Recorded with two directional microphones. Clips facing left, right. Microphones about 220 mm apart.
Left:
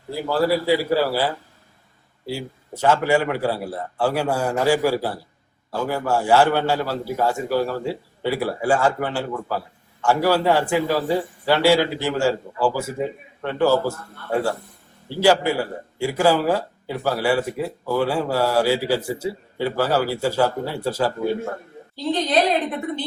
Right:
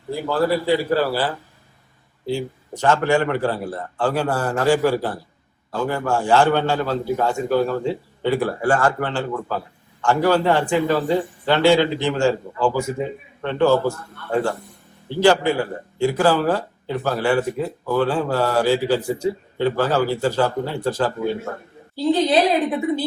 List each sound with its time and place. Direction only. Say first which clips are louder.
0.1 s a man's voice: even; 10° left (ahead or behind)
21.9 s a woman's voice: right 3 dB; 10° right (ahead or behind)